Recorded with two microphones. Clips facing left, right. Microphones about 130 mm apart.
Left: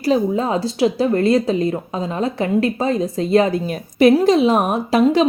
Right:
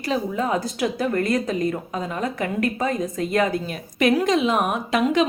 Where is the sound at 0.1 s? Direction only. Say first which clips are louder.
Left 6 dB; 30° left (ahead or behind).